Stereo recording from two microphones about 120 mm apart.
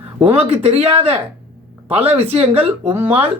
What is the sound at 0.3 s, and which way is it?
Speech, 55° right (ahead or behind).